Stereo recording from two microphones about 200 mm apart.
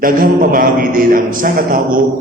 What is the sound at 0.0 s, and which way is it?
A man's voice, 45° right (ahead or behind).